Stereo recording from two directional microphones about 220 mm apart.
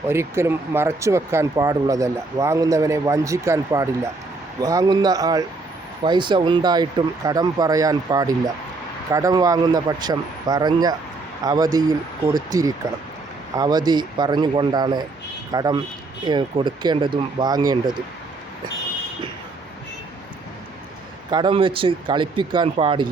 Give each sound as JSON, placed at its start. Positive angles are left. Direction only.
{"t": 0.1, "sound": "speech", "side_deg": -10}
{"t": 21.2, "sound": "speech", "side_deg": -20}